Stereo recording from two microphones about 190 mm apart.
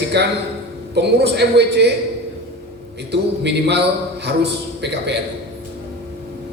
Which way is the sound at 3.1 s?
65° right (ahead or behind).